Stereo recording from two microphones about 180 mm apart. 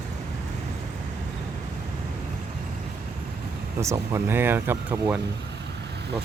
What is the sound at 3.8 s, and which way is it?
Speech, 15° right (ahead or behind).